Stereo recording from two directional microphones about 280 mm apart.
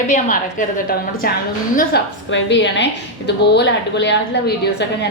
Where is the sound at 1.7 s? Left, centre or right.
Left.